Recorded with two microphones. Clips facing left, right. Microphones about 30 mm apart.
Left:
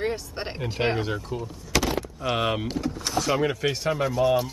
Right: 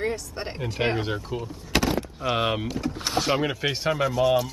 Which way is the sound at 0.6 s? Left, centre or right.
Centre.